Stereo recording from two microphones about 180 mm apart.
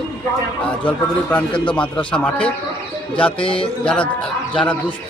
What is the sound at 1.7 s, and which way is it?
Speech, 5° left (ahead or behind).